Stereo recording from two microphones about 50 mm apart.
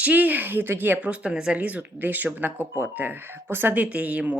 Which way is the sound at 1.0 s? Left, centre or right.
Right.